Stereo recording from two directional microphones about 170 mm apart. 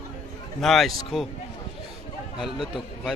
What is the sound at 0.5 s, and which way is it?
Speech, centre (ahead or behind).